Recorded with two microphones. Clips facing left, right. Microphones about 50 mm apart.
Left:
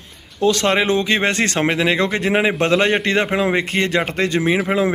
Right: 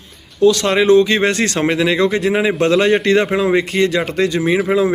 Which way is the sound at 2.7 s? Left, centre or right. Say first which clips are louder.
Right 4 dB; centre.